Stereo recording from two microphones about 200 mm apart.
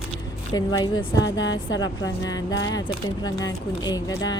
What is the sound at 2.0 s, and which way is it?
Speech, 20° left (ahead or behind).